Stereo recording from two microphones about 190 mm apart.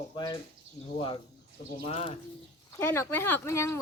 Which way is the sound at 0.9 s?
25° left (ahead or behind).